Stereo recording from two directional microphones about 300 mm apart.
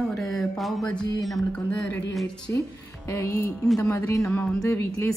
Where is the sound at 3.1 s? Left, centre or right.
Centre.